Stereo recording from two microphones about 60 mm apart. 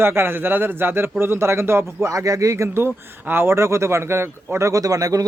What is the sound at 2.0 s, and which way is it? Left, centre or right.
Speech, right.